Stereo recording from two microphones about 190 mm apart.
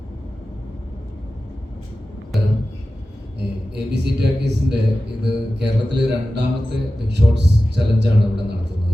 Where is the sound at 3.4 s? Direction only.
60° right (ahead or behind).